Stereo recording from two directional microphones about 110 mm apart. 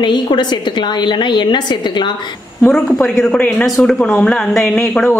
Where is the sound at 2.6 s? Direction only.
5° left (ahead or behind).